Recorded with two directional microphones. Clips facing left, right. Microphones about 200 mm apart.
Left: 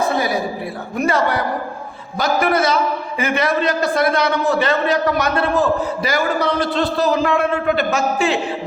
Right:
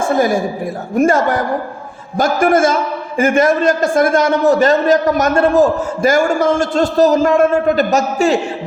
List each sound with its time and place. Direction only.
0.0 s a woman's voice: 50° right (ahead or behind)